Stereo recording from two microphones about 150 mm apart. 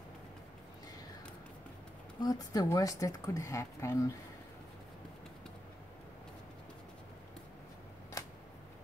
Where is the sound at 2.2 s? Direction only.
25° left (ahead or behind).